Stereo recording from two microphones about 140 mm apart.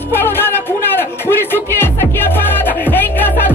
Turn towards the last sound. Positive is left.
turn(degrees=15)  # may be behind; listen again after turning